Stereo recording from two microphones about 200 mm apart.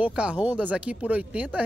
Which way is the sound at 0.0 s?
5° right (ahead or behind).